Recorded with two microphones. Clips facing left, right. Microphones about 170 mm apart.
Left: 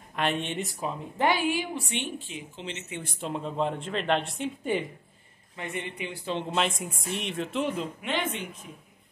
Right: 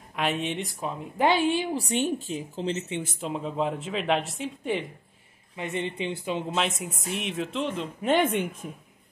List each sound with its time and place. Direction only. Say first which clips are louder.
0.1 s speech: right 1 dB; centre (ahead or behind)
1.1 s a woman's voice: right 3 dB; 20° right (ahead or behind)
1.7 s a woman's voice: right 7 dB; 35° right (ahead or behind)
3.0 s speech: right 2 dB; centre (ahead or behind)
5.6 s a woman's voice: right 5 dB; 25° right (ahead or behind)
6.2 s speech: left 1 dB; 5° right (ahead or behind)
8.0 s a woman's voice: right 8 dB; 50° right (ahead or behind)